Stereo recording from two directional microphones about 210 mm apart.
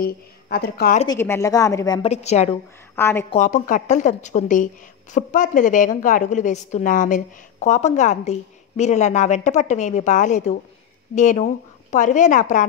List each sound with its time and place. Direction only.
0.0 s speech: 50° left (ahead or behind)
1.0 s a woman's voice: 10° left (ahead or behind)
2.0 s a woman's voice: 30° left (ahead or behind)
3.0 s a woman's voice: 10° left (ahead or behind)
3.3 s a woman's voice: 40° left (ahead or behind)